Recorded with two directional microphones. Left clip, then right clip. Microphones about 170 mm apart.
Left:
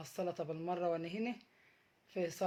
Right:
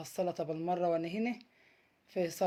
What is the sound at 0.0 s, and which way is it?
Speech, 30° right (ahead or behind).